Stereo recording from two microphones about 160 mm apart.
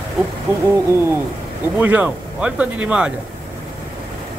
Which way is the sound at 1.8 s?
10° right (ahead or behind).